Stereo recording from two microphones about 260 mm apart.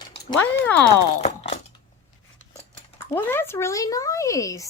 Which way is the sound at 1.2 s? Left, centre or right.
Left.